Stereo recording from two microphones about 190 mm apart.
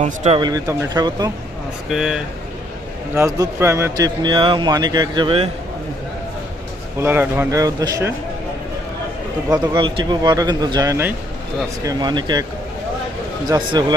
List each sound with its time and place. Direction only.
0.0 s speech: 40° right (ahead or behind)
0.3 s a man's voice: 20° right (ahead or behind)
1.9 s speech: centre (ahead or behind)
3.2 s a man's voice: 15° right (ahead or behind)
7.0 s speech: 10° right (ahead or behind)
9.5 s a man's voice: 25° right (ahead or behind)
13.5 s a man's voice: 20° right (ahead or behind)